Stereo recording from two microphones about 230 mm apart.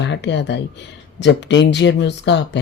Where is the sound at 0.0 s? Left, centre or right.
Left.